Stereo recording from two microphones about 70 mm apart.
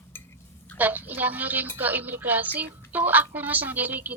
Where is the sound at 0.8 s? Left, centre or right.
Right.